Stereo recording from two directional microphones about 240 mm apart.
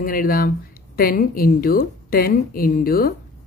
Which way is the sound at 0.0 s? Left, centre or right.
Left.